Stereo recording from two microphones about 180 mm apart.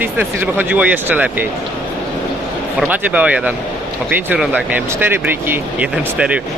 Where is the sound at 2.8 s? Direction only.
5° right (ahead or behind).